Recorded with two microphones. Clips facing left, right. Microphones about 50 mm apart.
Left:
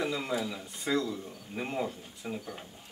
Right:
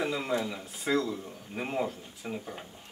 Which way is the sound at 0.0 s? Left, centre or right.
Centre.